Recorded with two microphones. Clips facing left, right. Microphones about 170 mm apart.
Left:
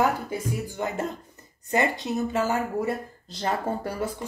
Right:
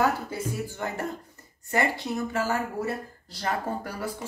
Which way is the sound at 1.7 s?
20° left (ahead or behind).